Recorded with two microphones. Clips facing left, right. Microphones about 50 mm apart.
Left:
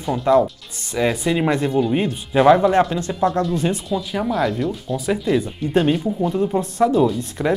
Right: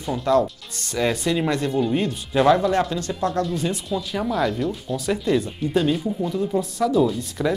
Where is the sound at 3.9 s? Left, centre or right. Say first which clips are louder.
Left 3 dB; centre.